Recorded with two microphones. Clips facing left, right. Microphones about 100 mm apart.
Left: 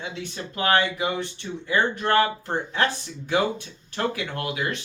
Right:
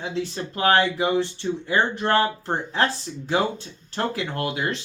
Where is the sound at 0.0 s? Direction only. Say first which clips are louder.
Right 5 dB; 35° right (ahead or behind).